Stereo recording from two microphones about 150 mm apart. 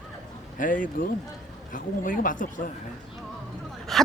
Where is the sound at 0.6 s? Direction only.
60° left (ahead or behind).